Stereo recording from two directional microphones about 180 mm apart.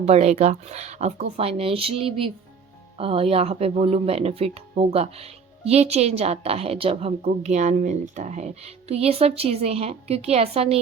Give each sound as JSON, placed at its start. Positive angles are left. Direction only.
{"t": 0.0, "sound": "speech", "side_deg": -35}